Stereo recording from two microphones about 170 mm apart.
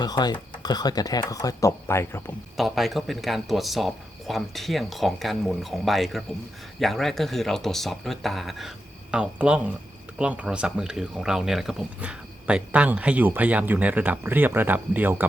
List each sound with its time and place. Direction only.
0.0 s speech: 25° left (ahead or behind)
2.6 s speech: centre (ahead or behind)